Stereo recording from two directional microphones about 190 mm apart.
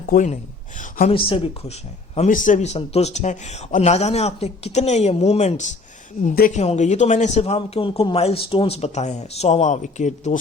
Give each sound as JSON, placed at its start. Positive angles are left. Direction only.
{"t": 0.1, "sound": "speech", "side_deg": 40}
{"t": 0.8, "sound": "a sound", "side_deg": 45}
{"t": 1.1, "sound": "speech", "side_deg": 30}